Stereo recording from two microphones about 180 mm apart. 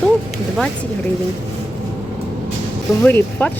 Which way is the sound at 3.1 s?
10° left (ahead or behind).